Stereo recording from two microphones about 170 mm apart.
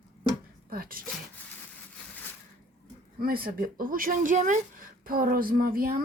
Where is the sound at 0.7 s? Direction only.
60° right (ahead or behind).